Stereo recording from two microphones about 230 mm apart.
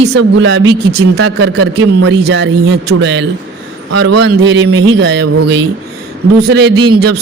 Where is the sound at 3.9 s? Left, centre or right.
Right.